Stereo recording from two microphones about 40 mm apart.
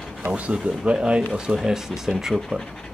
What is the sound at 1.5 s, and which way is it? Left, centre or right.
Speech, centre.